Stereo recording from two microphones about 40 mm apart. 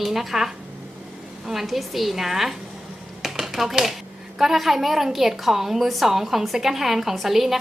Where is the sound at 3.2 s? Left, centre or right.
Centre.